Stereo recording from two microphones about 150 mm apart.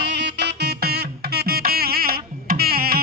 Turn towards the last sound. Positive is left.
turn(degrees=-90)